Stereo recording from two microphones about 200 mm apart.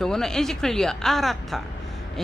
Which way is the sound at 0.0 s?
5° left (ahead or behind).